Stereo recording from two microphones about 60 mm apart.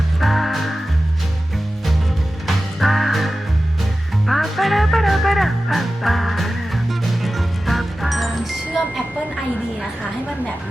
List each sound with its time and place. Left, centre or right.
0.2 s music: centre
2.8 s music: centre